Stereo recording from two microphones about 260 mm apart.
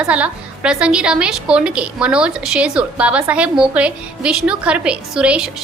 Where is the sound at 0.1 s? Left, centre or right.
Centre.